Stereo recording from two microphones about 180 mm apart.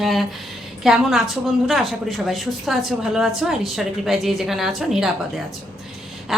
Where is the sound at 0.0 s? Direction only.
Centre (ahead or behind).